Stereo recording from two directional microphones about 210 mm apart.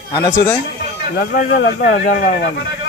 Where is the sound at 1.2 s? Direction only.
45° left (ahead or behind).